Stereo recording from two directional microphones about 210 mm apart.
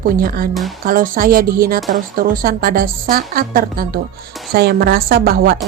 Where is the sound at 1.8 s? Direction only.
Centre (ahead or behind).